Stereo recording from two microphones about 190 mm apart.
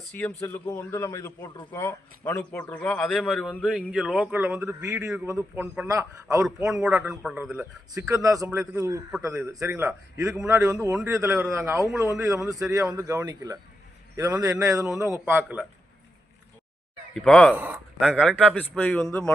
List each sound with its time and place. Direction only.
0.1 s a man's voice: 10° left (ahead or behind); by 6.7 s 15° right (ahead or behind)
6.7 s a man's voice: 5° right (ahead or behind)
17.2 s a man's voice: 5° left (ahead or behind)
17.5 s a man's voice: 10° right (ahead or behind)